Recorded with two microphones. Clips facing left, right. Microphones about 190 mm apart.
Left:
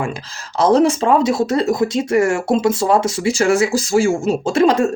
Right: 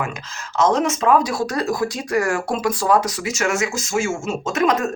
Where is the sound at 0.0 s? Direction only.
35° left (ahead or behind).